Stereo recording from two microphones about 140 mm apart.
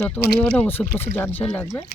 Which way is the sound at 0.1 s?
10° left (ahead or behind).